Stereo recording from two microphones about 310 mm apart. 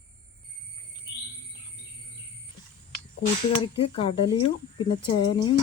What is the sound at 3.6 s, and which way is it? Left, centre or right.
Speech, centre.